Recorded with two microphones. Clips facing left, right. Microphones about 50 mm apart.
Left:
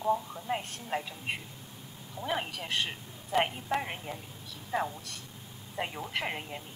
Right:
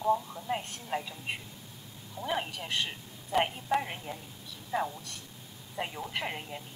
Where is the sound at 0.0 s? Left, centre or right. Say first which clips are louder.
Right 1 dB; centre.